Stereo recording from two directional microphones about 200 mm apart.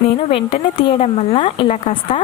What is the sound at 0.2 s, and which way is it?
Speech, 30° left (ahead or behind).